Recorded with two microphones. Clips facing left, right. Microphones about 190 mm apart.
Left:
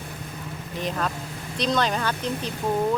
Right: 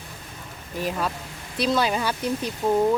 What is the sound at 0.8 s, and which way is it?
Speech, 5° right (ahead or behind).